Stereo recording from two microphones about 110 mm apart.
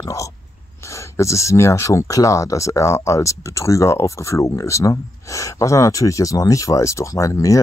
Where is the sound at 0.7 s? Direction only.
25° left (ahead or behind).